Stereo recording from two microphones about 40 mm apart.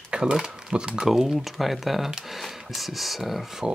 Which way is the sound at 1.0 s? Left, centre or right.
Centre.